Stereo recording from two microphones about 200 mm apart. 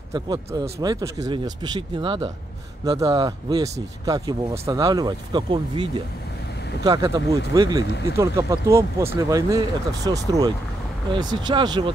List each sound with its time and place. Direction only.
0.1 s speech: 20° right (ahead or behind)